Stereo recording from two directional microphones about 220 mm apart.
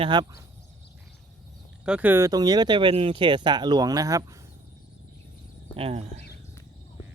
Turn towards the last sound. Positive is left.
turn(degrees=-25)  # may be behind; listen again after turning